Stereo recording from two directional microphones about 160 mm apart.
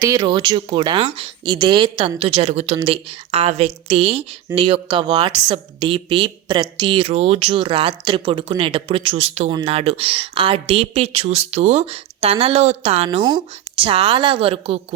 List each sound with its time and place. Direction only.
0.0 s speech: 20° right (ahead or behind)